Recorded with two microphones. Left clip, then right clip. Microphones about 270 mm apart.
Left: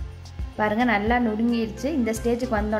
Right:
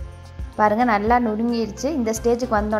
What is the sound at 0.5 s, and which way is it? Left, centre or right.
A woman's voice, centre.